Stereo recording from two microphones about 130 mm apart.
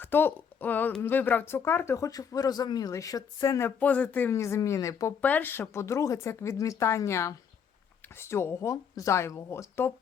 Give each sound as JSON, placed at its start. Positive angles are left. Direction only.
{"t": 0.0, "sound": "speech", "side_deg": 15}
{"t": 3.8, "sound": "speech", "side_deg": 10}
{"t": 5.2, "sound": "speech", "side_deg": 15}